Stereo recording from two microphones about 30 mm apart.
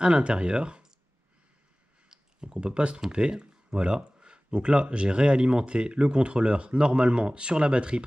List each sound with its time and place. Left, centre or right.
0.0 s speech: right
2.0 s a sound: centre
2.6 s speech: right